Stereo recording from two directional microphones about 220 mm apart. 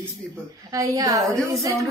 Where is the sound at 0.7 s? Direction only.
15° right (ahead or behind).